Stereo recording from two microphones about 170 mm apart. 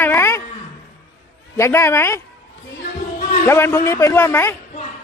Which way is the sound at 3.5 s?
15° left (ahead or behind).